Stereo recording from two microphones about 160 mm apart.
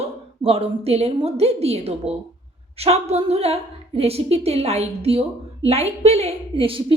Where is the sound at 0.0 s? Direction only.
35° right (ahead or behind).